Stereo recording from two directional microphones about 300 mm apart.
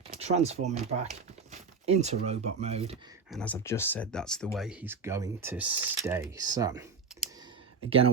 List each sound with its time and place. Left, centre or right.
0.1 s speech: right
3.3 s speech: centre
7.9 s speech: centre